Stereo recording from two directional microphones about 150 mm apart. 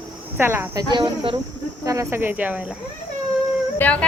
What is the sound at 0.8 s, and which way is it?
Speech, 30° right (ahead or behind).